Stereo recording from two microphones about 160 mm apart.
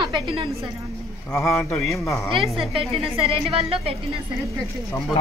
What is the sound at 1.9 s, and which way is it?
Speech, 20° left (ahead or behind).